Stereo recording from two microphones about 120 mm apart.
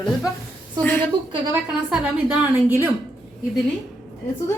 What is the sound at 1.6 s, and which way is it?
A woman's voice, 5° right (ahead or behind).